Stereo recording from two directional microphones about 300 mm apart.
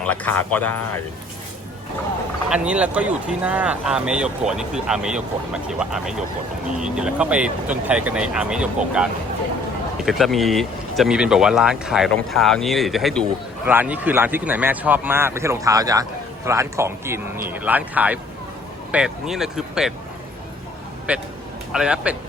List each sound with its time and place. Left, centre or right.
0.0 s speech: centre
2.5 s speech: centre
21.1 s speech: centre